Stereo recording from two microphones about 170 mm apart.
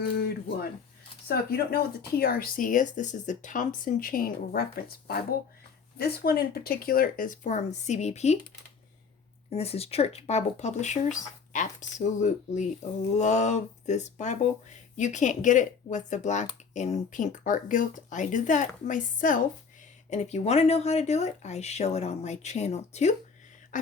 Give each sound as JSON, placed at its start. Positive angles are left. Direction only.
{"t": 1.3, "sound": "speech", "side_deg": 65}
{"t": 9.5, "sound": "speech", "side_deg": 35}
{"t": 23.7, "sound": "a sound", "side_deg": 50}